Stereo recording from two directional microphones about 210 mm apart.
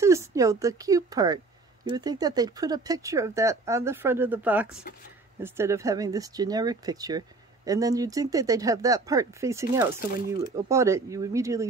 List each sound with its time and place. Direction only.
0.0 s speech: 15° right (ahead or behind)